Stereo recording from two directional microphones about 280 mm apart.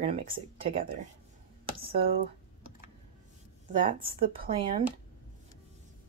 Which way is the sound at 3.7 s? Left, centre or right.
Centre.